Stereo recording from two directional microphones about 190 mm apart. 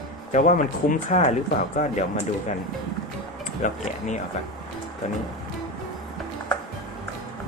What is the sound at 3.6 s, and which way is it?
Speech, 40° left (ahead or behind).